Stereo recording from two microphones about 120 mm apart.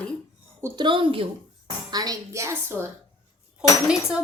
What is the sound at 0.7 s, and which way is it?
Speech, 45° right (ahead or behind).